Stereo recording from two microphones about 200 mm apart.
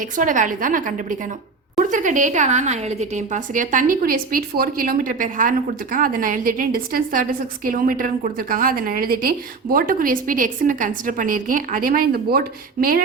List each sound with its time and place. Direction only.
0.0 s a woman's voice: 40° right (ahead or behind)